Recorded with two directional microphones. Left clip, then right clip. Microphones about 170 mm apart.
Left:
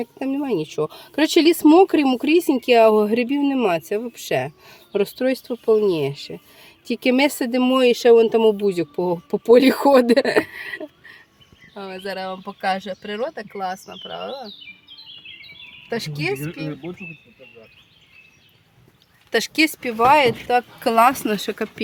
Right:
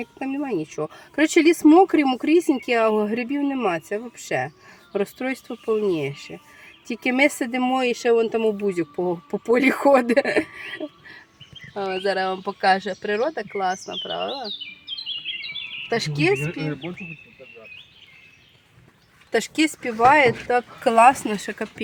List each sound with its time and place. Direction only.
0.0 s speech: 5° right (ahead or behind)
7.7 s speech: 5° left (ahead or behind); by 10.8 s 20° right (ahead or behind)
11.7 s speech: 55° right (ahead or behind)
15.9 s speech: 55° right (ahead or behind)
19.3 s a woman's voice: 5° left (ahead or behind); by 21.3 s 20° left (ahead or behind)